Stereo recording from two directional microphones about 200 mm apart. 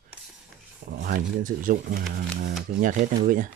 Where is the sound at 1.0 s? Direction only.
45° right (ahead or behind).